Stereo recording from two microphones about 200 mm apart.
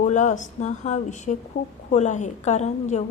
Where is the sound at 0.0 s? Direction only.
35° left (ahead or behind).